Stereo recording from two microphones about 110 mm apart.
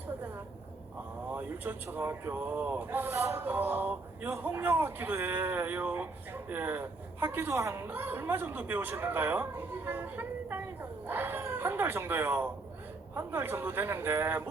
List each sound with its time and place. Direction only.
1.3 s speech: 15° right (ahead or behind)